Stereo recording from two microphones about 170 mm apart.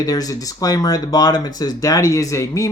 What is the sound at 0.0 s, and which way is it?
Speech, 20° left (ahead or behind).